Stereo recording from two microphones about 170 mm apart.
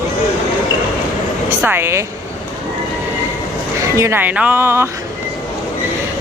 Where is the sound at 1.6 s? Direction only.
15° right (ahead or behind).